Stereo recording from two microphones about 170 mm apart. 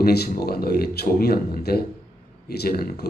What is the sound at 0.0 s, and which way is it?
Speech, 65° left (ahead or behind).